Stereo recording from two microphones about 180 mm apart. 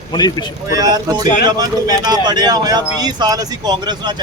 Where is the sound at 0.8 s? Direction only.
20° right (ahead or behind).